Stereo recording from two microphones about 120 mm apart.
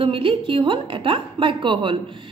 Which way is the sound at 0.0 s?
45° right (ahead or behind).